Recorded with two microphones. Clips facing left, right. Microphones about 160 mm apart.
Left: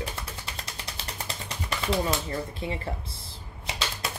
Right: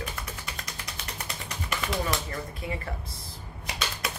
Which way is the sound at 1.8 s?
30° left (ahead or behind).